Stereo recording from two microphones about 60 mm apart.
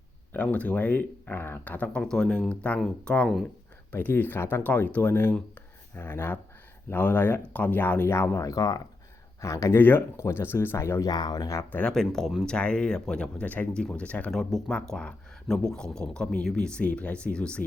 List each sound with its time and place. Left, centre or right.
0.3 s speech: left
1.9 s speech: centre
3.9 s speech: left
8.1 s speech: left
8.4 s speech: left
9.4 s speech: left
9.7 s speech: left
10.2 s speech: left
11.0 s speech: left
11.9 s speech: centre
14.3 s speech: centre
14.7 s speech: centre